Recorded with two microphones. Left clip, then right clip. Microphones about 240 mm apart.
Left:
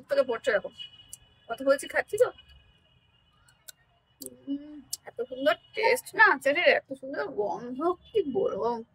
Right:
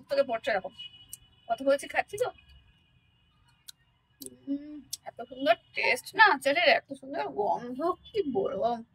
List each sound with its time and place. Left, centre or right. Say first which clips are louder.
0.1 s a woman's voice: left 2 dB; centre
3.7 s tick: right 1 dB; left
4.6 s a woman's voice: even; left